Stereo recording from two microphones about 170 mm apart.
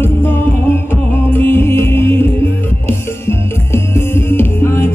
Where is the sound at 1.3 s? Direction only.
10° left (ahead or behind).